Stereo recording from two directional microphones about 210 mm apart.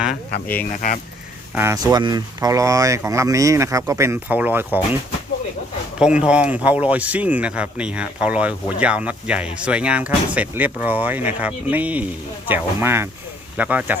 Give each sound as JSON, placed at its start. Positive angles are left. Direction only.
{"t": 0.7, "sound": "speech", "side_deg": 40}
{"t": 1.5, "sound": "speech", "side_deg": -15}
{"t": 6.0, "sound": "speech", "side_deg": -5}